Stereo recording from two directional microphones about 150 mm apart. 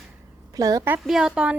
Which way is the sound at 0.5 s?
25° right (ahead or behind).